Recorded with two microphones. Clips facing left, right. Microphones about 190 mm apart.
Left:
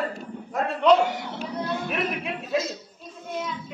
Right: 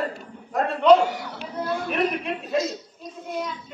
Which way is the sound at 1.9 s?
Centre (ahead or behind).